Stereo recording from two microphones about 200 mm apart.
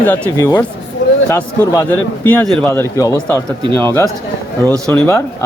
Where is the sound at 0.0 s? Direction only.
10° left (ahead or behind).